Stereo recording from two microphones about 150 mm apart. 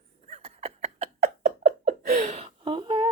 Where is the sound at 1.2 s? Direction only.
70° right (ahead or behind); by 3.0 s 30° right (ahead or behind).